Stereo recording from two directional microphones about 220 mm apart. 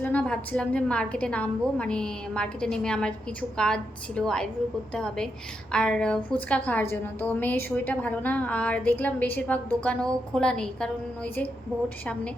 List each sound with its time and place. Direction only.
0.0 s a woman's voice: 5° left (ahead or behind)